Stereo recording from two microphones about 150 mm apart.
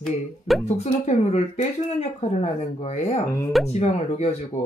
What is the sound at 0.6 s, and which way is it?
Speech, 45° left (ahead or behind).